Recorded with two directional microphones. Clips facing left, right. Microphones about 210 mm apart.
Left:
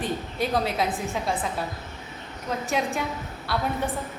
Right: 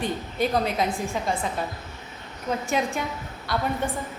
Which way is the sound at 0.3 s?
Centre (ahead or behind).